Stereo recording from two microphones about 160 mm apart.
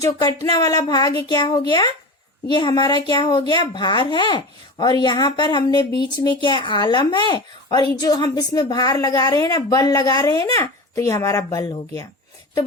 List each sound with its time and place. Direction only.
0.0 s speech: 25° left (ahead or behind)